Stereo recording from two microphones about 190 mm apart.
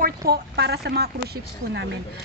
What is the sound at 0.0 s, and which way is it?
A woman's voice, 50° right (ahead or behind).